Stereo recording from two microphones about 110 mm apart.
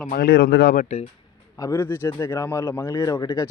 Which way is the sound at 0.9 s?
90° left.